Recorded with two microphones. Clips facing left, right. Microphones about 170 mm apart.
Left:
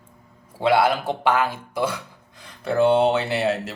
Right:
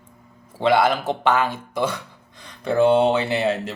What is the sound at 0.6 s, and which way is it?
A man's voice, 10° left (ahead or behind).